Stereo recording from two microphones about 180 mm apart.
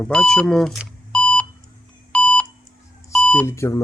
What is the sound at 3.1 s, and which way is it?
Speech, 15° left (ahead or behind).